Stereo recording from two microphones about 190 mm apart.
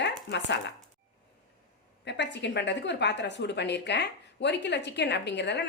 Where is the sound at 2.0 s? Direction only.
65° left (ahead or behind).